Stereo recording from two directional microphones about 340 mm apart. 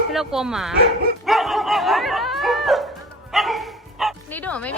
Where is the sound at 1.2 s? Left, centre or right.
Centre.